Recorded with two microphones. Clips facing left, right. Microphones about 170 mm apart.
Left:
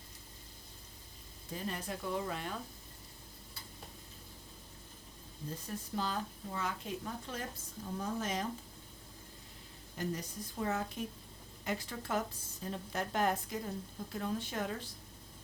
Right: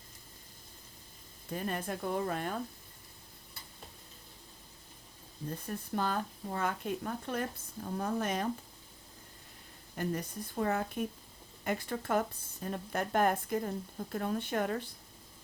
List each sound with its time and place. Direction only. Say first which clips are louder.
1.5 s speech: right 4 dB; 55° right (ahead or behind)
5.5 s speech: right 4 dB; 55° right (ahead or behind)
10.0 s speech: right 3 dB; 55° right (ahead or behind)